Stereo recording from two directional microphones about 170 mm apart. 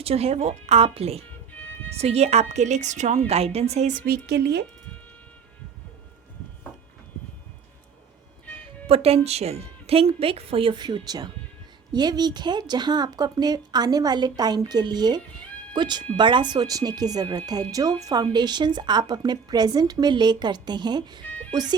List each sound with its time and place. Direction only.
0.0 s a woman's voice: 35° right (ahead or behind)
4.0 s speech: 70° right (ahead or behind)
8.9 s a woman's voice: 35° right (ahead or behind)